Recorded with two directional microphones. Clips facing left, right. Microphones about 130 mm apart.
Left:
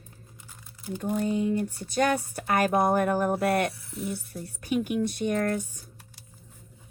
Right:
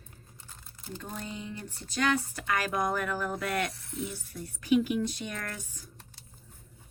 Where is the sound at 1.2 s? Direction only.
45° left (ahead or behind).